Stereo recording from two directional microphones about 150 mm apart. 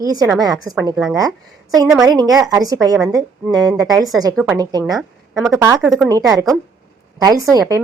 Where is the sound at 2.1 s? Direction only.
25° right (ahead or behind).